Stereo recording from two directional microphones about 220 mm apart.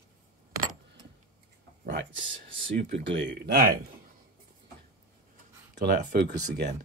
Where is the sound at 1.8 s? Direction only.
55° right (ahead or behind).